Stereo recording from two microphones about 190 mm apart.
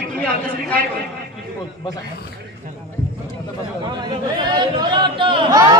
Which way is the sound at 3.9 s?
20° right (ahead or behind).